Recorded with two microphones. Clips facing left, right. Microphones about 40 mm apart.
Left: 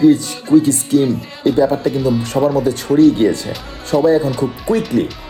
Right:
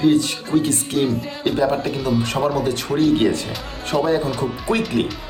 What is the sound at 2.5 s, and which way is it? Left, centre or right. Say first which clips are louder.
Speech: left 6 dB; right.